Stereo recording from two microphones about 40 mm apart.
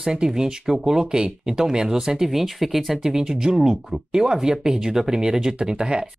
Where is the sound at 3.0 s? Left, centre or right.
Centre.